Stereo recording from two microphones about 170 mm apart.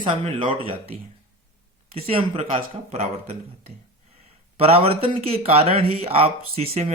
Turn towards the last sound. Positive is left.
turn(degrees=-35)  # may be behind; listen again after turning